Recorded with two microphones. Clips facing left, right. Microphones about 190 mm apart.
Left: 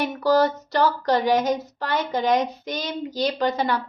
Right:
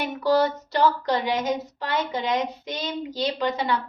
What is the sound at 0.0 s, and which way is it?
Child singing, 40° left (ahead or behind).